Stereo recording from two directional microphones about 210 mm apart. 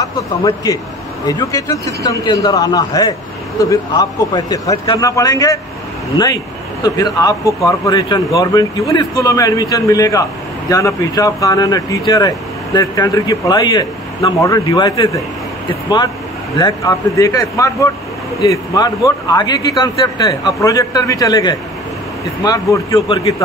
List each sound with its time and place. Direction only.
0.4 s a man's voice: 25° left (ahead or behind)
16.5 s speech: 20° left (ahead or behind)